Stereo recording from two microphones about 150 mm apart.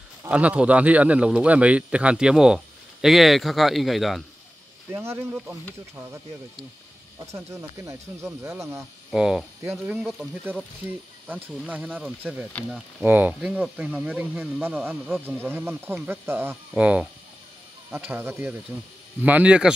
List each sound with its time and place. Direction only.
0.3 s a man's voice: 10° right (ahead or behind)
4.9 s a man's voice: 15° right (ahead or behind)
7.3 s speech: 20° right (ahead or behind)
9.1 s a man's voice: 5° right (ahead or behind)